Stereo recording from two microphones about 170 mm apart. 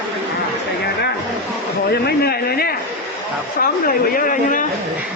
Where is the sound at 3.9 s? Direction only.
55° left (ahead or behind).